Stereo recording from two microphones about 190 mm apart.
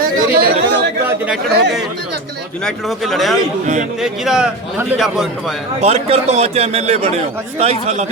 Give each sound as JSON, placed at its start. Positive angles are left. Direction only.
{"t": 0.0, "sound": "chatter", "side_deg": -50}
{"t": 1.0, "sound": "speech", "side_deg": -5}
{"t": 5.8, "sound": "a man's voice", "side_deg": -35}